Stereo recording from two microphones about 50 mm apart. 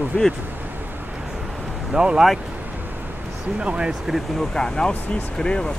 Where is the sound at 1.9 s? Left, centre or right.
Centre.